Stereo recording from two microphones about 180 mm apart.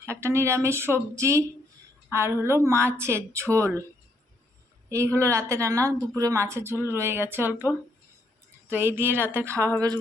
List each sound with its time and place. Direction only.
0.1 s a woman's voice: 15° right (ahead or behind)
4.9 s a woman's voice: 15° right (ahead or behind)